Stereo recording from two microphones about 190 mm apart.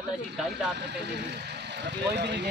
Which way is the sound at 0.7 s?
65° right (ahead or behind).